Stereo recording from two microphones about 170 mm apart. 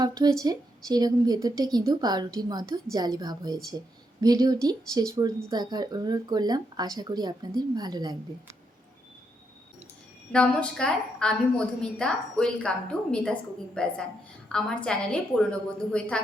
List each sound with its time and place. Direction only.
0.0 s speech: 20° right (ahead or behind)
10.3 s a woman's voice: 5° left (ahead or behind)